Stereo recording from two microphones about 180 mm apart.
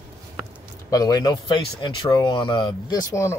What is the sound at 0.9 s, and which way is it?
Speech, 20° left (ahead or behind).